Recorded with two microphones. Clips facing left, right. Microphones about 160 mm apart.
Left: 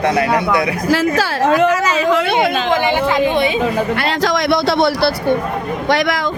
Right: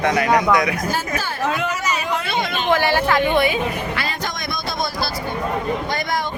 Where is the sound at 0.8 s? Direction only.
90° left; by 2.7 s 60° left (ahead or behind).